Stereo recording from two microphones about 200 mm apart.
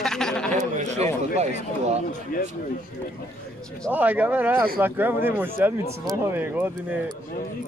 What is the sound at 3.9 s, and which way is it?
Speech, 10° right (ahead or behind).